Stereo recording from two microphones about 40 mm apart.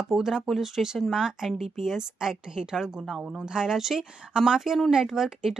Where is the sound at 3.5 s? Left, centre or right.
Centre.